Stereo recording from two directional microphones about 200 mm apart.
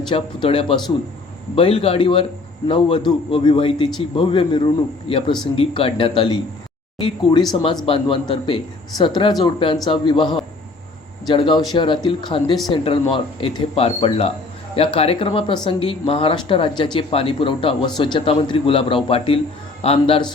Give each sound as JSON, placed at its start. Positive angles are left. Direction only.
{"t": 0.1, "sound": "speech", "side_deg": 25}